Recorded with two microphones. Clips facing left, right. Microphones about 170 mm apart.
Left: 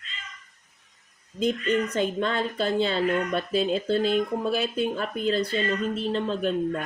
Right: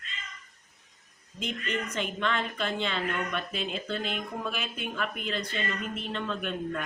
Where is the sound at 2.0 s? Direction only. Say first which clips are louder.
Left 5 dB; 35° left (ahead or behind).